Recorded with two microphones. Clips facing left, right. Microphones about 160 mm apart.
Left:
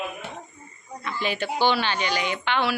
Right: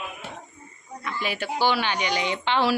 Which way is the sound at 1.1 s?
10° right (ahead or behind).